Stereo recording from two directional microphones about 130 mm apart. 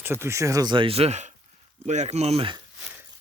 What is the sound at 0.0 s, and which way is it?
Speech, 20° right (ahead or behind).